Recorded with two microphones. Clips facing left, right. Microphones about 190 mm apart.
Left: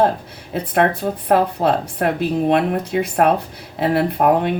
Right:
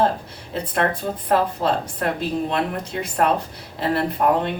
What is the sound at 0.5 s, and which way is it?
Speech, 60° left (ahead or behind).